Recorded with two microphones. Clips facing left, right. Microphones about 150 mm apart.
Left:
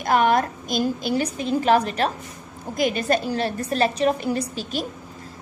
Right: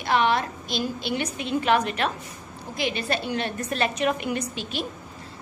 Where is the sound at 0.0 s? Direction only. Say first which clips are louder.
Left 3 dB; 45° left (ahead or behind).